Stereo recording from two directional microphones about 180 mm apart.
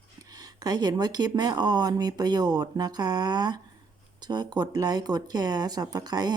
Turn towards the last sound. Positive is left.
turn(degrees=-20)  # may be behind; listen again after turning